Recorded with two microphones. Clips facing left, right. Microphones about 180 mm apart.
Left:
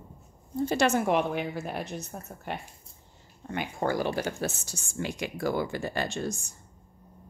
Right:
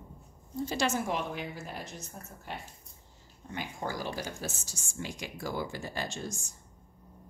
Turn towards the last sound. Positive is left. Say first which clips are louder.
# left 6 dB
turn(degrees=65)  # may be behind; listen again after turning